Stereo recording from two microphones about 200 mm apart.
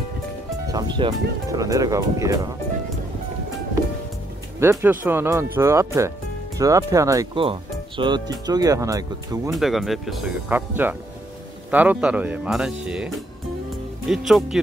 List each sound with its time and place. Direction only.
0.7 s speech: 20° right (ahead or behind)
4.6 s speech: 10° right (ahead or behind)
9.5 s speech: centre (ahead or behind)